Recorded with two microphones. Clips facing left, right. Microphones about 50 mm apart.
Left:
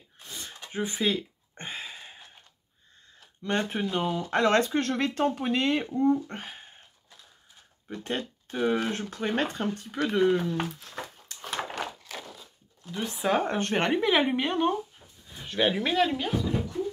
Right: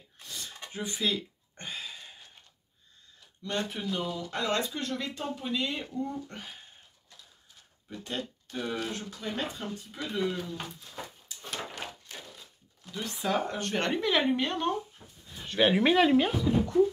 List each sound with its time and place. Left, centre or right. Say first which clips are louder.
0.2 s a sound: left 1 dB; left
3.2 s speech: left 4 dB; left
5.9 s speech: left 10 dB; left
7.9 s speech: left 4 dB; left
10.8 s a sound: left 3 dB; left
12.9 s speech: left 4 dB; left
13.4 s speech: left 5 dB; left
13.7 s speech: left 3 dB; centre
15.4 s a sound: right 1 dB; centre
15.7 s speech: right 5 dB; centre